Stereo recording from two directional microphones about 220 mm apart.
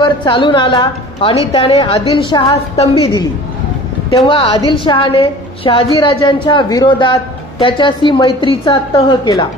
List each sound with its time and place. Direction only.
0.0 s a woman's voice: 20° left (ahead or behind)